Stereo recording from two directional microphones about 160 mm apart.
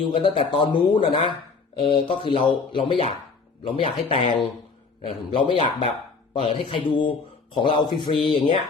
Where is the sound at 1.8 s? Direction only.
30° left (ahead or behind).